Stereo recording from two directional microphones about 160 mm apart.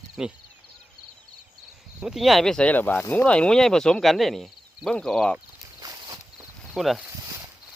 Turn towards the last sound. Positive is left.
turn(degrees=0)  # may be behind; listen again after turning